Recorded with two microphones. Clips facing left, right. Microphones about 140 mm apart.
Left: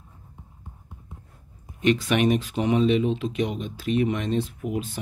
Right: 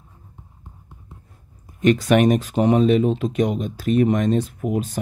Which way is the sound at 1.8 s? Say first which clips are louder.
Right 5 dB; 45° right (ahead or behind).